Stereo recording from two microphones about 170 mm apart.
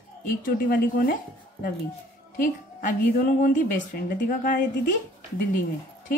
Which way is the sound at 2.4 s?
55° left (ahead or behind).